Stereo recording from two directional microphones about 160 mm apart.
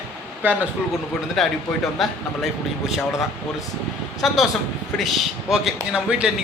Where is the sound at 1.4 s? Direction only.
Centre (ahead or behind).